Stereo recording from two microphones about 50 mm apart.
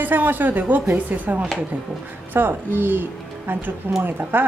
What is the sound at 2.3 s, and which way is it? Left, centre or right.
A woman's voice, right.